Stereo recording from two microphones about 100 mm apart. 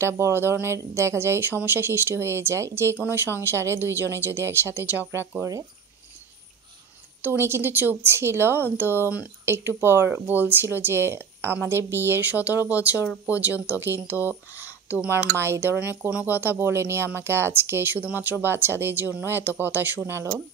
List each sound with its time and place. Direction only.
0.0 s speech: 25° right (ahead or behind)
7.2 s speech: 25° right (ahead or behind)